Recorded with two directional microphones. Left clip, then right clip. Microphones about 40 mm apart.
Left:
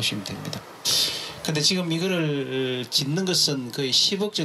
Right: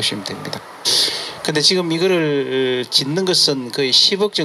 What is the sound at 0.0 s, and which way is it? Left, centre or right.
Speech, right.